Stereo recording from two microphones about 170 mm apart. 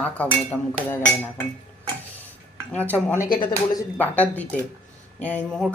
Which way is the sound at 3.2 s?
25° left (ahead or behind).